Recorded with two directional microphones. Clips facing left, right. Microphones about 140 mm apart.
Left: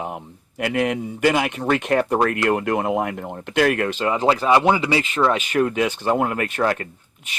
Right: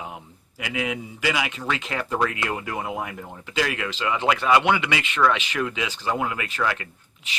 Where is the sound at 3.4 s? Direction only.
55° left (ahead or behind).